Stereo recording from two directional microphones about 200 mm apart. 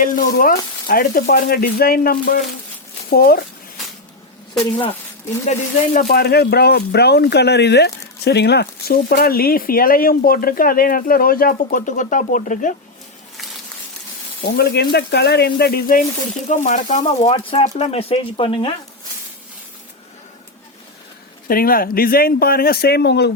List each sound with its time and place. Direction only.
0.0 s speech: 45° left (ahead or behind)
5.5 s speech: 45° left (ahead or behind)
14.5 s speech: 50° left (ahead or behind); by 18.7 s 25° left (ahead or behind)
21.4 s speech: 45° left (ahead or behind)